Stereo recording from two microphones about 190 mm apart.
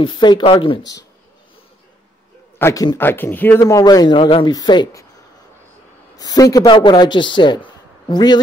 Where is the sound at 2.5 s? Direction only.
15° left (ahead or behind).